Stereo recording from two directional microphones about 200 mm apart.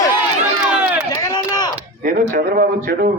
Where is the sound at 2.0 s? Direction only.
45° right (ahead or behind).